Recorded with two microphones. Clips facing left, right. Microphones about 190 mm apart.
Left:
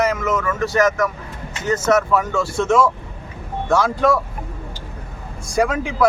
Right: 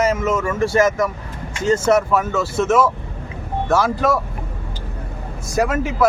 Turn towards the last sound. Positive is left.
turn(degrees=-5)  # may be behind; listen again after turning